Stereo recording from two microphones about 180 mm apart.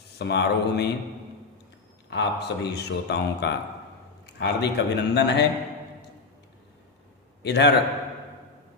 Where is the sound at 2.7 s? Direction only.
70° left (ahead or behind).